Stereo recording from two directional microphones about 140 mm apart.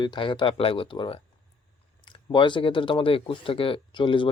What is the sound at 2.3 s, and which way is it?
Speech, 35° left (ahead or behind).